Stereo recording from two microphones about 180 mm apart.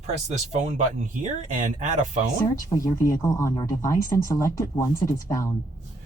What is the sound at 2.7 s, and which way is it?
Speech, 20° left (ahead or behind).